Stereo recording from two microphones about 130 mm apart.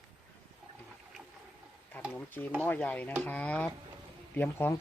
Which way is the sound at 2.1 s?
15° left (ahead or behind).